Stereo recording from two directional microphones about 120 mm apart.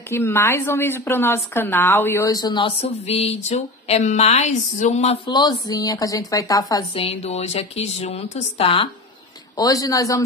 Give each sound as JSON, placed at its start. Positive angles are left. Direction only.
{"t": 0.1, "sound": "a woman's voice", "side_deg": 20}
{"t": 2.2, "sound": "a woman's voice", "side_deg": 35}
{"t": 2.8, "sound": "a sound", "side_deg": 60}
{"t": 5.3, "sound": "a woman's voice", "side_deg": 35}
{"t": 6.9, "sound": "speech", "side_deg": 55}
{"t": 9.6, "sound": "a woman's voice", "side_deg": 30}